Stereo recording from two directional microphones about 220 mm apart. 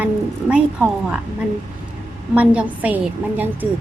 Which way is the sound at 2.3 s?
5° right (ahead or behind).